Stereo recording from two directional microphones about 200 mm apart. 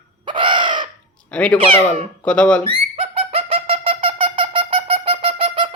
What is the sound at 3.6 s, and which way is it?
Wind instrument, 25° right (ahead or behind).